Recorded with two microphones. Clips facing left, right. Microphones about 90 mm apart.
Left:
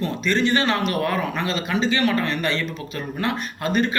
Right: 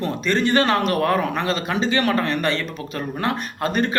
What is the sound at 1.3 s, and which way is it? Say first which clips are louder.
Speech: right 1 dB; 50° right (ahead or behind).